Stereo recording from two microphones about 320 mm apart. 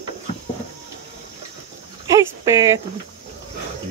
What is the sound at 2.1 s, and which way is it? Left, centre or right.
Cricket, centre.